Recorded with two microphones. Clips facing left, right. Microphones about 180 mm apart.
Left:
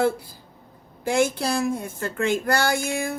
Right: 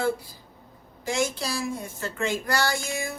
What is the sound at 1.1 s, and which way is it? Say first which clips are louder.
Speech: left 6 dB; 55° left (ahead or behind).